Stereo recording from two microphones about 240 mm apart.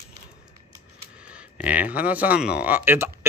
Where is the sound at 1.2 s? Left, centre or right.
Centre.